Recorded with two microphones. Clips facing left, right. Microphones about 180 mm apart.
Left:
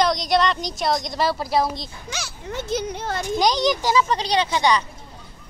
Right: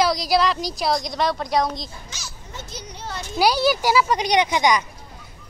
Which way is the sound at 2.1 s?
65° left (ahead or behind).